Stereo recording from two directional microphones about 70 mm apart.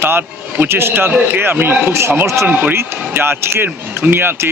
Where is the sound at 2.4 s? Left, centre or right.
Right.